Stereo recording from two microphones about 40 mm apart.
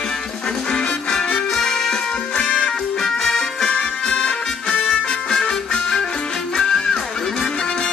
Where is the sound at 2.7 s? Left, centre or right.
Centre.